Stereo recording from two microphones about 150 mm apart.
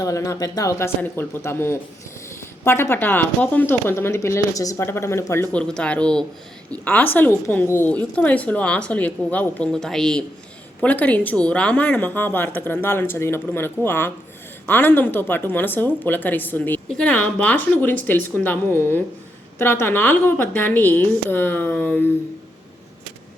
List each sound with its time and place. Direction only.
0.0 s a woman's voice: 20° left (ahead or behind)